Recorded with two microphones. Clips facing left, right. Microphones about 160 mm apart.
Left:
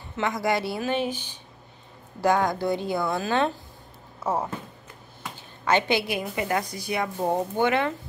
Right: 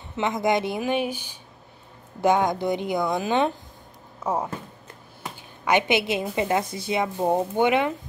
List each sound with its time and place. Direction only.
0.1 s a woman's voice: 20° right (ahead or behind)
5.7 s a woman's voice: 20° right (ahead or behind)